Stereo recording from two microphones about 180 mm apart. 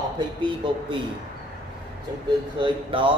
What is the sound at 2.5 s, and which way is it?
Speech, 30° right (ahead or behind).